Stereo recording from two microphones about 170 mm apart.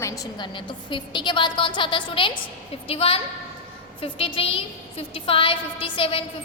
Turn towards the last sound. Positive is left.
turn(degrees=30)  # may be behind; listen again after turning